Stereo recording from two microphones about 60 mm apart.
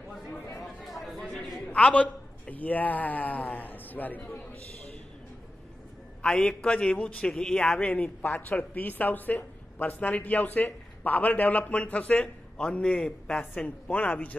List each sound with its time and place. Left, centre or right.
0.9 s a sound: centre
1.7 s a man's voice: left
6.2 s a man's voice: centre
7.8 s speech: left
13.4 s speech: left